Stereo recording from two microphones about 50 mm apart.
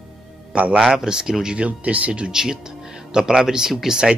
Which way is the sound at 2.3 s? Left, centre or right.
Centre.